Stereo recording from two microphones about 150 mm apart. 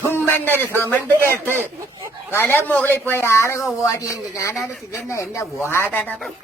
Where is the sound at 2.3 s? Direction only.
15° left (ahead or behind).